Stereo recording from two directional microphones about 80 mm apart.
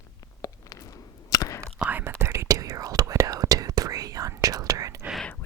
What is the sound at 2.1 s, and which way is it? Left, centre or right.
Whispering, right.